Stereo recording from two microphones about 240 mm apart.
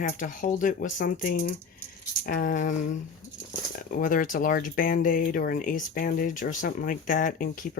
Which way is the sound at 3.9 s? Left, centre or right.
Left.